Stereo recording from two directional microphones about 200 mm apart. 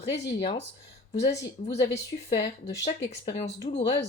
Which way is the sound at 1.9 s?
30° left (ahead or behind).